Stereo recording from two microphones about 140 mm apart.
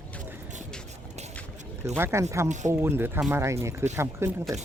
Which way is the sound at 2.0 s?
20° right (ahead or behind).